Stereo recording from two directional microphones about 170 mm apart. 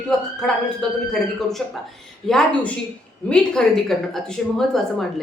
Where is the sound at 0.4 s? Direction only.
5° left (ahead or behind).